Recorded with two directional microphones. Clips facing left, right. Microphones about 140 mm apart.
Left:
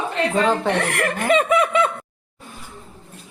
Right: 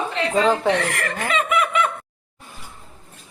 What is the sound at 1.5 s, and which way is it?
Snicker, 30° left (ahead or behind).